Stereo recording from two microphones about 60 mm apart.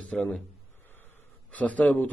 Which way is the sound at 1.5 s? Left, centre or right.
Left.